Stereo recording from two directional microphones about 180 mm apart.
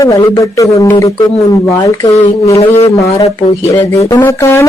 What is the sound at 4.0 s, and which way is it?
Speech, 15° left (ahead or behind).